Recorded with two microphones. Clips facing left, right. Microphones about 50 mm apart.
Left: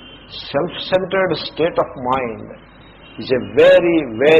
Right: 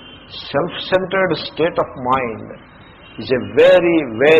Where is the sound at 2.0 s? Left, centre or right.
Centre.